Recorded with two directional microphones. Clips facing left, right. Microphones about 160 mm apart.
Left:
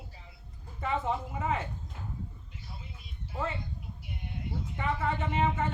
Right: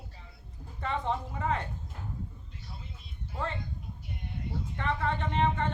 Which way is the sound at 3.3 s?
5° left (ahead or behind).